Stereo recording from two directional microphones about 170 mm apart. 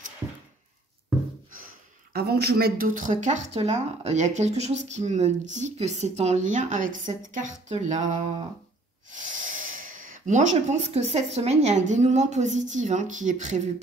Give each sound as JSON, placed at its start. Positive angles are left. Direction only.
{"t": 2.1, "sound": "speech", "side_deg": -70}
{"t": 9.1, "sound": "speech", "side_deg": -50}